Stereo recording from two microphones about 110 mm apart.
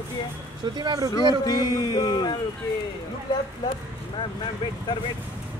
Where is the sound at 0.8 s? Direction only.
35° right (ahead or behind).